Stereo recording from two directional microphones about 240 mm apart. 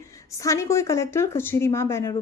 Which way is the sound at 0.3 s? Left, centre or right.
Centre.